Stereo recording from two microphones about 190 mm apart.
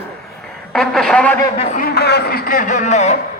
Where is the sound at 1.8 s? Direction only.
60° left (ahead or behind); by 3.1 s 35° left (ahead or behind).